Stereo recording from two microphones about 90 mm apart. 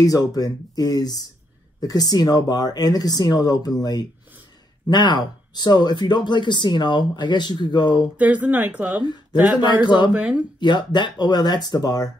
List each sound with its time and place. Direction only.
0.0 s speech: 40° left (ahead or behind)
8.2 s speech: 15° right (ahead or behind)
9.0 s speech: 55° left (ahead or behind)
10.1 s speech: 15° right (ahead or behind)
10.6 s speech: 55° left (ahead or behind)